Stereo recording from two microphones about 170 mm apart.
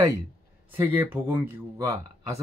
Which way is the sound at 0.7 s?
10° right (ahead or behind).